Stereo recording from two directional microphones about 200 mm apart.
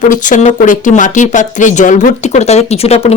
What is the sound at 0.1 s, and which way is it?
Speech, 40° left (ahead or behind).